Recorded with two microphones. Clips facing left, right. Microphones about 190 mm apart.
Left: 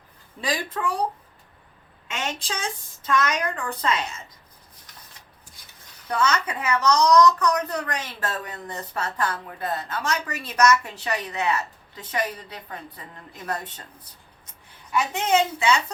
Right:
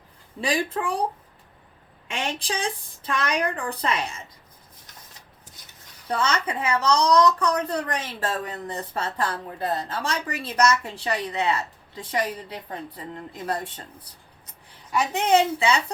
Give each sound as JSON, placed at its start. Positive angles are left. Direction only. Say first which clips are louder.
{"t": 0.4, "sound": "a woman's voice", "louder": "right 3 dB", "side_deg": -30}
{"t": 2.0, "sound": "speech", "louder": "right 2 dB", "side_deg": -30}
{"t": 6.1, "sound": "a woman's voice", "louder": "left 1 dB", "side_deg": -30}